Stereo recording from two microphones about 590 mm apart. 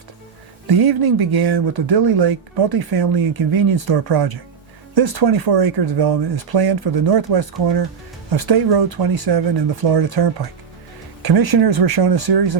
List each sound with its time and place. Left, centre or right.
0.7 s speech: right